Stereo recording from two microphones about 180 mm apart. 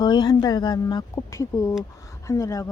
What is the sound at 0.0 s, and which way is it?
Speech, 25° left (ahead or behind).